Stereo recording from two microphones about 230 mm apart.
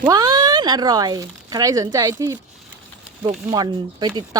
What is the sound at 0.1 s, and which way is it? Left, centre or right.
Speech, centre.